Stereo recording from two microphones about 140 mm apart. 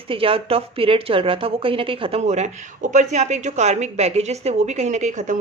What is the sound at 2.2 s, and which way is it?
A woman's voice, 55° right (ahead or behind).